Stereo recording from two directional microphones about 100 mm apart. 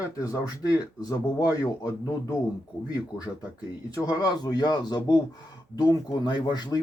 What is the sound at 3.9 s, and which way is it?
Speech, 40° left (ahead or behind).